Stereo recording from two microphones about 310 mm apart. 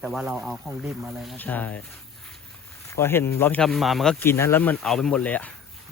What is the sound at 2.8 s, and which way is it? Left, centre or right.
Speech, centre.